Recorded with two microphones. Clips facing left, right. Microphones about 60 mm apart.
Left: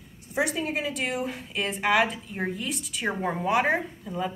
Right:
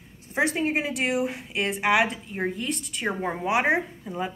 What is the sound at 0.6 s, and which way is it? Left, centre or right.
Speech, right.